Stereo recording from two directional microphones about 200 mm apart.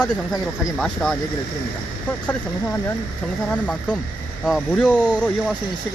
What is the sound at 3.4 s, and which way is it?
Speech, 5° left (ahead or behind).